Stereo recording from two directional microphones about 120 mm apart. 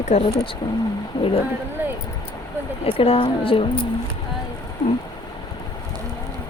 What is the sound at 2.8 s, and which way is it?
Speech, 50° left (ahead or behind).